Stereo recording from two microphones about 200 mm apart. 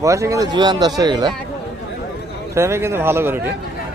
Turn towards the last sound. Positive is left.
turn(degrees=-10)  # may be behind; listen again after turning